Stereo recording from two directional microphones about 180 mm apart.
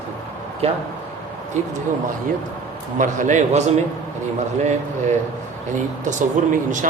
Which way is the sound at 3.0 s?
45° right (ahead or behind).